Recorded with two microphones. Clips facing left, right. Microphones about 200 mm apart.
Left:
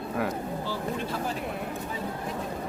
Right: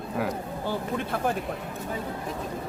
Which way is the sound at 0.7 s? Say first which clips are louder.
Right 5 dB; 55° right (ahead or behind).